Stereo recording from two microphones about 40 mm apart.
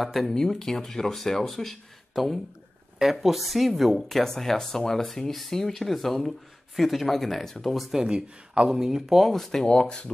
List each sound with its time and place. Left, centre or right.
0.0 s speech: centre
4.1 s speech: centre
8.0 s speech: centre
8.7 s speech: centre
9.7 s speech: left